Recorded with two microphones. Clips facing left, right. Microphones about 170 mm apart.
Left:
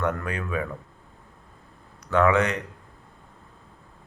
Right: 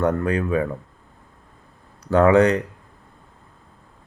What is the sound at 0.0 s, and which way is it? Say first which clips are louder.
Speech: right 7 dB; 30° right (ahead or behind).